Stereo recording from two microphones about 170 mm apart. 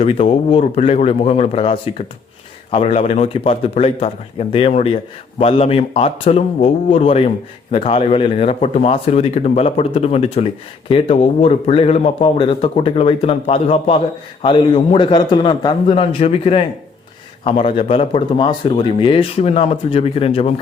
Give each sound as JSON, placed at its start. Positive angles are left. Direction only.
{"t": 0.0, "sound": "a man's voice", "side_deg": 35}